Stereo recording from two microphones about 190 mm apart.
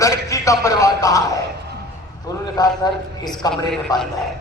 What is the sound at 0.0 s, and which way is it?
A man's voice, 15° left (ahead or behind).